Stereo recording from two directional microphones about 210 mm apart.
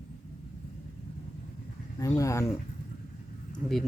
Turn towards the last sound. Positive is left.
turn(degrees=0)  # may be behind; listen again after turning